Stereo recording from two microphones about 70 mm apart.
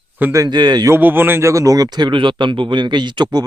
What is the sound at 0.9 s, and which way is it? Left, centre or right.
Speech, right.